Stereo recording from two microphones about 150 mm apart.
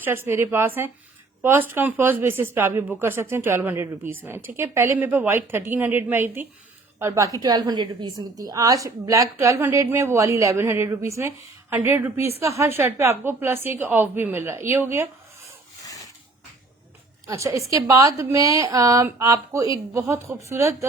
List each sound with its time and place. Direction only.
0.0 s a woman's voice: 15° right (ahead or behind)
17.2 s a woman's voice: 20° right (ahead or behind)